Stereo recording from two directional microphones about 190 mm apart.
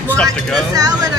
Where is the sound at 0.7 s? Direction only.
20° right (ahead or behind).